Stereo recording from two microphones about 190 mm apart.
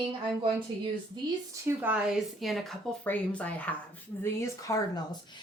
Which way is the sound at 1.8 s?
5° right (ahead or behind).